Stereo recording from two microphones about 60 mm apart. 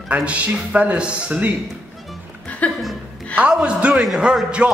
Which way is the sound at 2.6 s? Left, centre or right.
Left.